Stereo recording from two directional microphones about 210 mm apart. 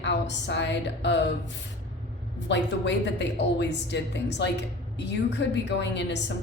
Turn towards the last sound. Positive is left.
turn(degrees=55)  # may be behind; listen again after turning